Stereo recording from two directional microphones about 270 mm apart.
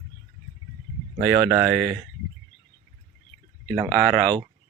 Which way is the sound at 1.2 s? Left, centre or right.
Centre.